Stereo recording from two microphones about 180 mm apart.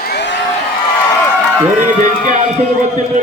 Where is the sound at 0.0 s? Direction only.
70° left (ahead or behind).